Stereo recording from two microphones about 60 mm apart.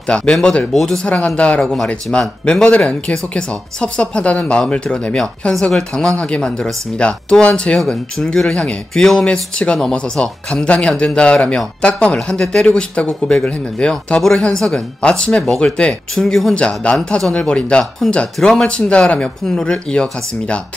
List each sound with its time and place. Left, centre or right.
0.1 s speech: centre
1.1 s speech: left
9.8 s speech: centre
16.5 s speech: centre